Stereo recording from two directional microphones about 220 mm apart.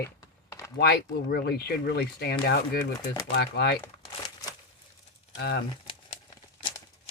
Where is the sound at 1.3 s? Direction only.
45° left (ahead or behind).